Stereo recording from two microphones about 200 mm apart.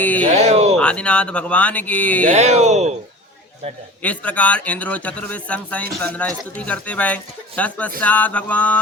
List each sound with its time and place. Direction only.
0.0 s speech: 10° left (ahead or behind)
0.3 s a sound: 35° right (ahead or behind)
0.8 s speech: 5° left (ahead or behind)
2.2 s speech: 35° right (ahead or behind)
4.0 s speech: 5° left (ahead or behind)